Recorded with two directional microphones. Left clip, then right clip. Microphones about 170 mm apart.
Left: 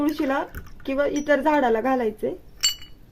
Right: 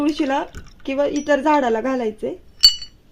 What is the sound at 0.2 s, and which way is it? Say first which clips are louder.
Speech: right 3 dB; 30° right (ahead or behind).